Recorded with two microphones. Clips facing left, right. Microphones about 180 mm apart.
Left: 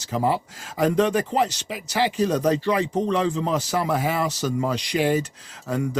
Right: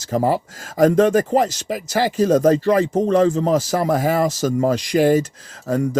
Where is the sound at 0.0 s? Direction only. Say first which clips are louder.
Right 4 dB; 45° right (ahead or behind).